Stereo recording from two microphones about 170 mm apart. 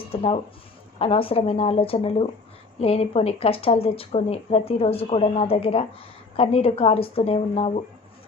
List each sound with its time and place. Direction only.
0.1 s speech: 35° left (ahead or behind)